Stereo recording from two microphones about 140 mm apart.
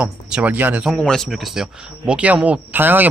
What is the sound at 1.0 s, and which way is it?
Speech, 5° left (ahead or behind).